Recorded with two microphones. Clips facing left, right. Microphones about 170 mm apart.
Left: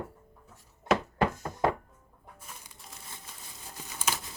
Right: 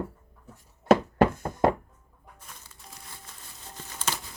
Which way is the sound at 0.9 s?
55° right (ahead or behind).